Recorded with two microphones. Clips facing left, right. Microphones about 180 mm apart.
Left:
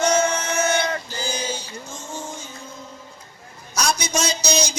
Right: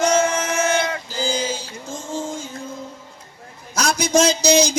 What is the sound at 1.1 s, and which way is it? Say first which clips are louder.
Male singing: right 5 dB; 90° right.